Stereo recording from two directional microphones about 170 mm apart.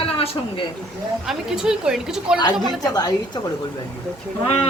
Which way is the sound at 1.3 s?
5° right (ahead or behind).